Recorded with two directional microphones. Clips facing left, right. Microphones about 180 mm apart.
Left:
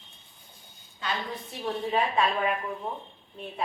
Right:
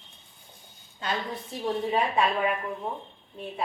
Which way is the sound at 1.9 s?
10° right (ahead or behind).